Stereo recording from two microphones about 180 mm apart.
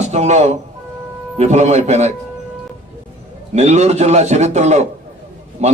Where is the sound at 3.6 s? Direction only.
40° right (ahead or behind).